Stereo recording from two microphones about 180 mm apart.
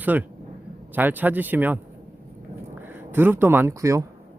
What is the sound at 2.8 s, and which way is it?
Speech, 10° right (ahead or behind).